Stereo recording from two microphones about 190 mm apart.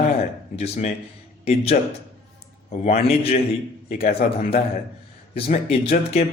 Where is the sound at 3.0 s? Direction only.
30° left (ahead or behind).